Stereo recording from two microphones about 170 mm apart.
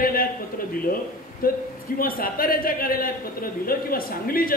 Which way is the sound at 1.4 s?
60° left (ahead or behind).